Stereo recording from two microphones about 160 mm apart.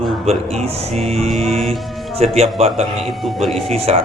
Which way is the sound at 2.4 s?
40° right (ahead or behind).